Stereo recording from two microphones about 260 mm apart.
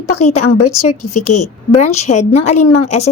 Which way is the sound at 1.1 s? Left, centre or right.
Left.